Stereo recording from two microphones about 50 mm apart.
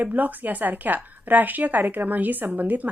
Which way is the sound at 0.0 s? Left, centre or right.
Right.